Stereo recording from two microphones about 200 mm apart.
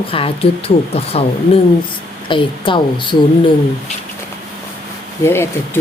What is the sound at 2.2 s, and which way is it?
Speech, 25° left (ahead or behind).